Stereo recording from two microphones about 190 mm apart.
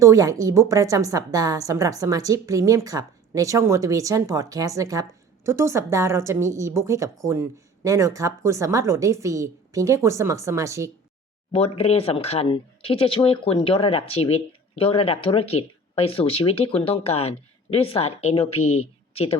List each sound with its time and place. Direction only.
0.0 s a woman's voice: 15° right (ahead or behind)
11.5 s speech: 30° left (ahead or behind)